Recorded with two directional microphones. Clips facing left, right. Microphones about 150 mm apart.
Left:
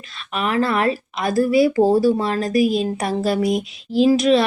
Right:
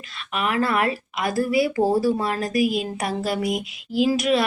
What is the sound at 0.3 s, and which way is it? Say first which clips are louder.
Speech: left 2 dB; 25° left (ahead or behind).